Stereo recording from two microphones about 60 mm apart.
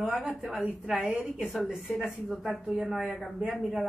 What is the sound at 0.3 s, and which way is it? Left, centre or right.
Speech, centre.